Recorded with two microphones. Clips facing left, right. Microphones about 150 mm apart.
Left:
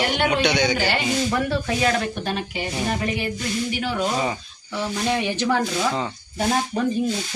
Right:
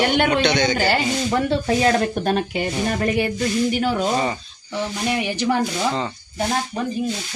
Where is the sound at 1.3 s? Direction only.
25° right (ahead or behind); by 3.3 s 50° right (ahead or behind).